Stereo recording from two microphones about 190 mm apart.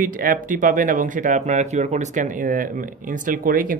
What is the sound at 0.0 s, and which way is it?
Speech, 45° right (ahead or behind).